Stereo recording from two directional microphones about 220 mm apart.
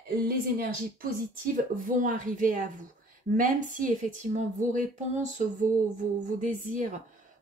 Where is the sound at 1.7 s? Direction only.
35° right (ahead or behind).